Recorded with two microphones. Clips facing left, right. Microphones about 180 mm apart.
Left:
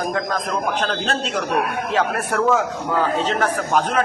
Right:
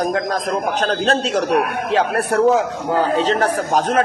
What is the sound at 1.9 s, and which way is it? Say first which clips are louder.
Speech: right 4 dB; 35° right (ahead or behind).